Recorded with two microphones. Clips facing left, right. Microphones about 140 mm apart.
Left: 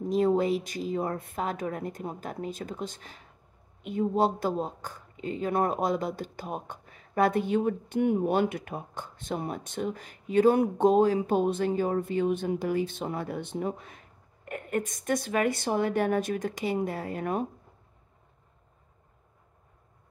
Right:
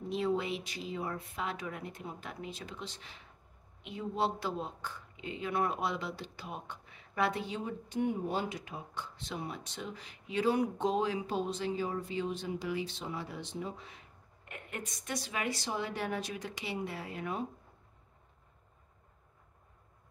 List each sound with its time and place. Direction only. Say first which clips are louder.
0.1 s speech: left 8 dB; 45° left (ahead or behind)